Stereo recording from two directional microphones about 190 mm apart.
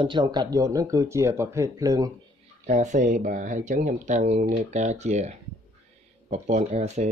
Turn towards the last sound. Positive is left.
turn(degrees=-35)  # may be behind; listen again after turning